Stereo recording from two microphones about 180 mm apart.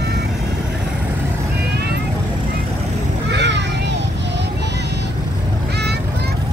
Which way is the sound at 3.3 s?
75° right (ahead or behind).